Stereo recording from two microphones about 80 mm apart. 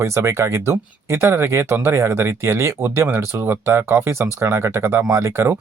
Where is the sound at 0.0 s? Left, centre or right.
Right.